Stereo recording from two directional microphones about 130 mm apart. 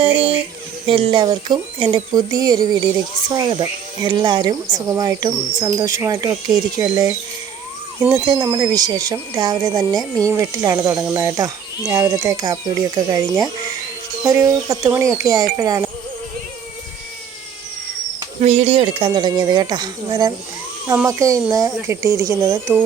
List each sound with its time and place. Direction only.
0.0 s child singing: 45° right (ahead or behind)
0.9 s speech: 40° right (ahead or behind)
8.1 s speech: 25° right (ahead or behind)
18.3 s speech: 60° right (ahead or behind); by 22.8 s 20° right (ahead or behind)